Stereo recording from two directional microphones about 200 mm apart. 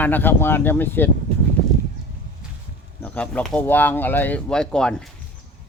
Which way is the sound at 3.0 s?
5° left (ahead or behind).